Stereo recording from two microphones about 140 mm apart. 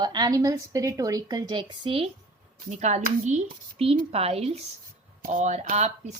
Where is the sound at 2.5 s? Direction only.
60° right (ahead or behind).